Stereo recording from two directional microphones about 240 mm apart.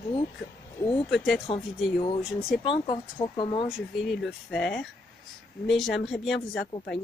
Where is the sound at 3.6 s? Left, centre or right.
Centre.